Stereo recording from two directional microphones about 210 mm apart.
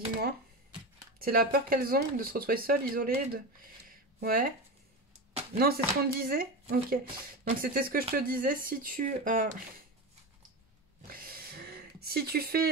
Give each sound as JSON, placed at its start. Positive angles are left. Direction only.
{"t": 1.2, "sound": "speech", "side_deg": -45}
{"t": 5.6, "sound": "speech", "side_deg": -45}
{"t": 11.0, "sound": "a sound", "side_deg": -45}